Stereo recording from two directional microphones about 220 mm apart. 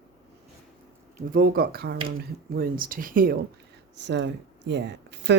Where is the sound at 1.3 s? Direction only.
45° right (ahead or behind).